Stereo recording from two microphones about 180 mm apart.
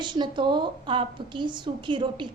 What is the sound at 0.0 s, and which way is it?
A woman's voice, 25° right (ahead or behind).